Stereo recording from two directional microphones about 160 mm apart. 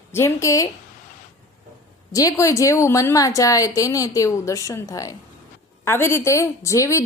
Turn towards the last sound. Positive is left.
turn(degrees=20)  # may be behind; listen again after turning